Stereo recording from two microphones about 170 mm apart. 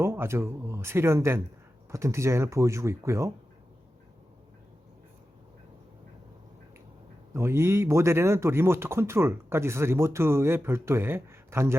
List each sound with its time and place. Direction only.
0.0 s speech: 15° right (ahead or behind)
7.3 s speech: 15° right (ahead or behind)